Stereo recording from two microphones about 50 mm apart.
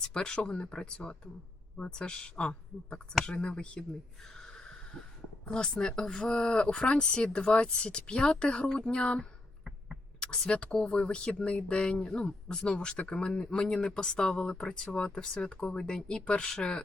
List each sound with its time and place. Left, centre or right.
0.0 s speech: centre
4.4 s a sound: centre
5.5 s speech: centre